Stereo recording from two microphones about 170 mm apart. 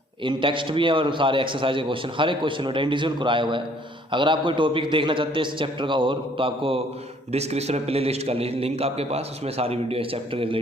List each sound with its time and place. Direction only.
0.3 s a man's voice: 30° right (ahead or behind)